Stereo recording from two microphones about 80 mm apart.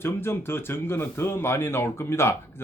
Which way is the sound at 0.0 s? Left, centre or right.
Left.